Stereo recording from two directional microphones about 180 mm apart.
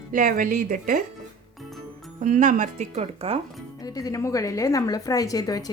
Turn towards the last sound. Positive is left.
turn(degrees=20)  # may be behind; listen again after turning